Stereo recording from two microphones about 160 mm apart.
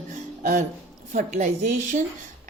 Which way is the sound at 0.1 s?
50° right (ahead or behind).